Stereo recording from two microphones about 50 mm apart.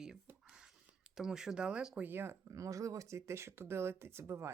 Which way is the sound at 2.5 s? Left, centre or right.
Right.